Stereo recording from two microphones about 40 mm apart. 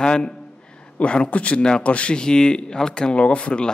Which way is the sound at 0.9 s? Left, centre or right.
Left.